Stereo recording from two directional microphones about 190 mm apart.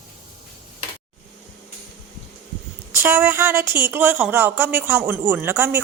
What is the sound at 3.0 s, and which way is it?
A woman's voice, 15° right (ahead or behind).